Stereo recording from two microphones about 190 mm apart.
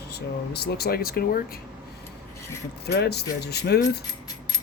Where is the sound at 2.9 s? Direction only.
60° left (ahead or behind).